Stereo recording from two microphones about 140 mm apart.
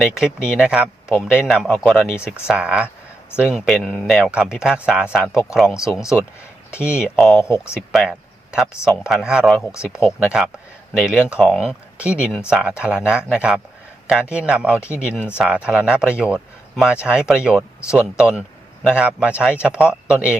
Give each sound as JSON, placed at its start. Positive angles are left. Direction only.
{"t": 0.0, "sound": "speech", "side_deg": -5}
{"t": 2.1, "sound": "speech", "side_deg": 15}
{"t": 2.5, "sound": "speech", "side_deg": -5}
{"t": 7.4, "sound": "speech", "side_deg": 20}
{"t": 7.7, "sound": "speech", "side_deg": 0}